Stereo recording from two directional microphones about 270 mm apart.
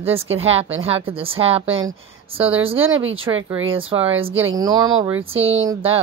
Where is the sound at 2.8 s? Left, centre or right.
Right.